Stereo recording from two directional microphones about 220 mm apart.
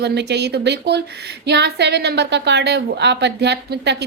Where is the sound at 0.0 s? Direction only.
50° right (ahead or behind).